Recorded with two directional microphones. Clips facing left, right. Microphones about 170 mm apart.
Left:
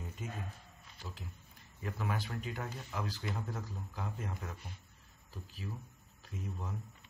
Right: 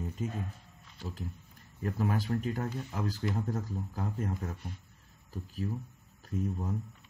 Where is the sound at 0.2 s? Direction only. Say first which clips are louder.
Right 8 dB; 40° right (ahead or behind).